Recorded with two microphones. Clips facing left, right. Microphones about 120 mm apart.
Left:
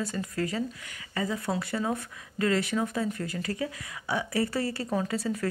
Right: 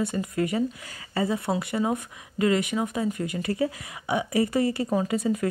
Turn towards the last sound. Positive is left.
turn(degrees=-15)  # may be behind; listen again after turning